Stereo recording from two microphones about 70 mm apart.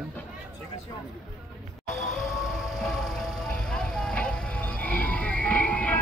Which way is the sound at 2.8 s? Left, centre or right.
Centre.